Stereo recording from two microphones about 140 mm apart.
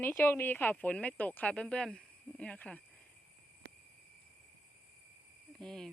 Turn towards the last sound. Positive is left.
turn(degrees=5)  # may be behind; listen again after turning